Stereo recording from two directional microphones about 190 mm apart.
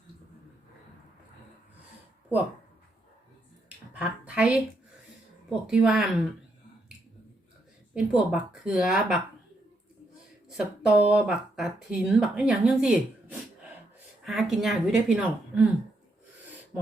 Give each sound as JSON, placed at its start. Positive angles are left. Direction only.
{"t": 3.9, "sound": "a woman's voice", "side_deg": -5}
{"t": 7.9, "sound": "speech", "side_deg": -5}
{"t": 10.5, "sound": "speech", "side_deg": 0}
{"t": 14.3, "sound": "speech", "side_deg": 0}